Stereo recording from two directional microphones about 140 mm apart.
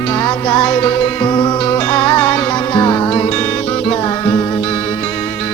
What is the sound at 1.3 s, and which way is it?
Music, 30° left (ahead or behind).